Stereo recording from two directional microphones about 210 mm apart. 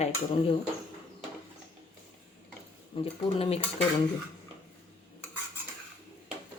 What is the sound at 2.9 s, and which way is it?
Speech, 25° left (ahead or behind).